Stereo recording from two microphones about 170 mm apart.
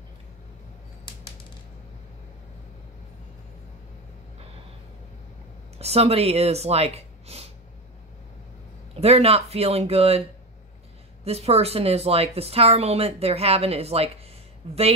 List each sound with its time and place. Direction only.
5.8 s speech: 35° right (ahead or behind)
8.9 s speech: 35° right (ahead or behind)
11.2 s speech: 35° right (ahead or behind)